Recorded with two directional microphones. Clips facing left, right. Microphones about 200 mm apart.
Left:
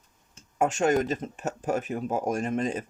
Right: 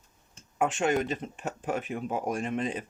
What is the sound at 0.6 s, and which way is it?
Speech, 40° left (ahead or behind).